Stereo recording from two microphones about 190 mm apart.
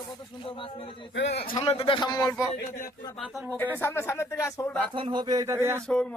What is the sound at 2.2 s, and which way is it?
Speech, centre (ahead or behind).